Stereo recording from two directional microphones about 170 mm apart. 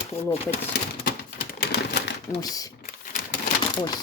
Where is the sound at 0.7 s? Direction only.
75° left (ahead or behind).